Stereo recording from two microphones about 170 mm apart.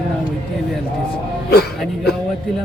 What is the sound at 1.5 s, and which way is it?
Speech, 70° left (ahead or behind).